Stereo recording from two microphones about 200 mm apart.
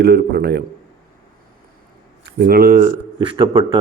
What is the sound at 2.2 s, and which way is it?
Speech, 50° right (ahead or behind).